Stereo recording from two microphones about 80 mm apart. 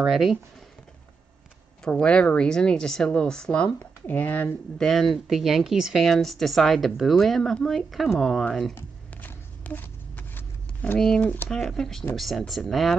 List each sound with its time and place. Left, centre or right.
0.0 s speech: centre
1.9 s speech: centre
4.7 s speech: centre
8.7 s a sound: left
11.1 s speech: centre
11.4 s speech: centre